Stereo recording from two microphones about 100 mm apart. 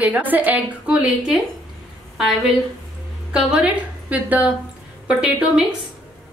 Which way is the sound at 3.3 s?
5° right (ahead or behind).